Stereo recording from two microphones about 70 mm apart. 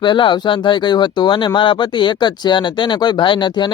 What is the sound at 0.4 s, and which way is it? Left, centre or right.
Speech, left.